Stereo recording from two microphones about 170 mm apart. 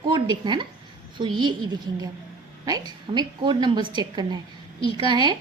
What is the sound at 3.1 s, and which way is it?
A woman's voice, 25° right (ahead or behind).